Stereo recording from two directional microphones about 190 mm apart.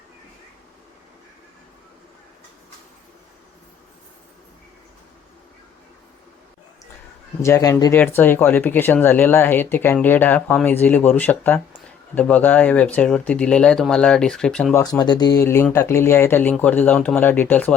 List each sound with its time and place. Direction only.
7.4 s speech: 15° left (ahead or behind)
14.8 s speech: 20° left (ahead or behind)